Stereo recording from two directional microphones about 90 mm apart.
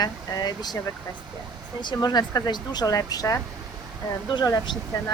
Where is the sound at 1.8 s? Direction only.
50° left (ahead or behind).